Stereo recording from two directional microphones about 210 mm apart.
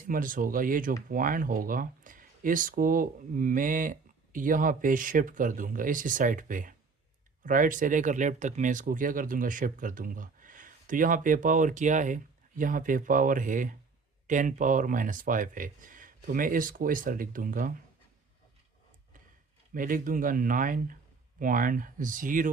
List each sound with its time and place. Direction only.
0.0 s speech: 40° right (ahead or behind)
19.7 s speech: 40° right (ahead or behind)